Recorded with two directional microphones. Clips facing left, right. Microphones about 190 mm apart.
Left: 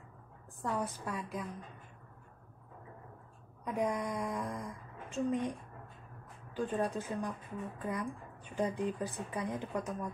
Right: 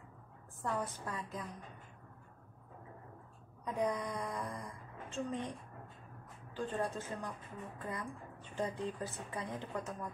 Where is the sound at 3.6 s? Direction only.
15° left (ahead or behind).